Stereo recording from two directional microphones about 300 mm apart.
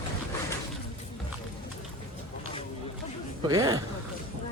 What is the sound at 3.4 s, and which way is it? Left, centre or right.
Speech, centre.